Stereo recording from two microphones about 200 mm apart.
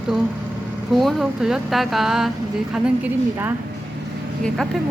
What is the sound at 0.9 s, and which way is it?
Speech, centre (ahead or behind).